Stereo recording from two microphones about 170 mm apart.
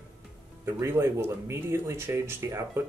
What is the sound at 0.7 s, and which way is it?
Speech, 15° right (ahead or behind).